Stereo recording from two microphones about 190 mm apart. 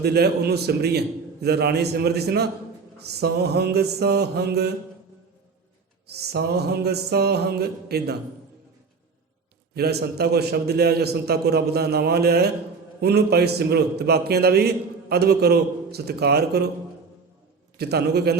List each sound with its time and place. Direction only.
0.0 s a man's voice: 60° right (ahead or behind)
6.1 s a man's voice: 60° right (ahead or behind)
9.7 s a man's voice: 55° right (ahead or behind)
17.7 s a man's voice: 60° right (ahead or behind)